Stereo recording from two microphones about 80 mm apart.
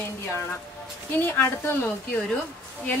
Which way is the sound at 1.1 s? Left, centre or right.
Left.